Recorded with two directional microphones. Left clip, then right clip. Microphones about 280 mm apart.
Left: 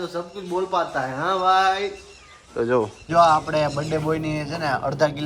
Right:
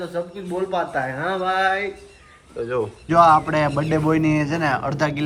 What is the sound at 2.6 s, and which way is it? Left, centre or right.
Speech, left.